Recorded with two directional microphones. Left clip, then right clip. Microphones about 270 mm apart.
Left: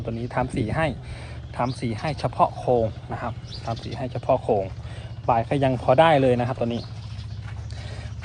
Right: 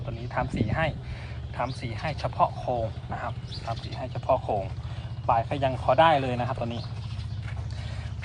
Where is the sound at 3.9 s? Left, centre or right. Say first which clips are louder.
Left 3 dB; left.